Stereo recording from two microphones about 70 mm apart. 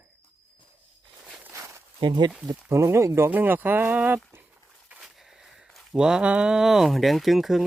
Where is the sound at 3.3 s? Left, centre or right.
Right.